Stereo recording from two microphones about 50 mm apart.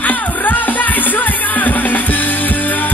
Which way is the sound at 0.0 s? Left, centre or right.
Left.